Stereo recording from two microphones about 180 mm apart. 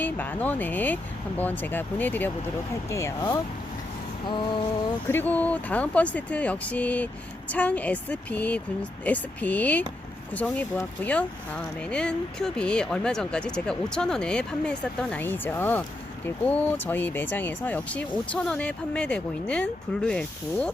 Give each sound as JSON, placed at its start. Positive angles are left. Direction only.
{"t": 0.0, "sound": "speech", "side_deg": 10}
{"t": 5.0, "sound": "speech", "side_deg": 10}